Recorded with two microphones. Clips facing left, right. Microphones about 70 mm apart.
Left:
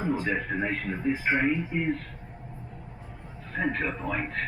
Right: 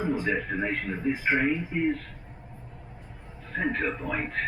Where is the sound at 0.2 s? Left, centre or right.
Centre.